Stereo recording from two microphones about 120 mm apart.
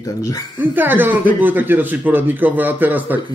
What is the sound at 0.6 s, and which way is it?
A man's voice, 15° right (ahead or behind).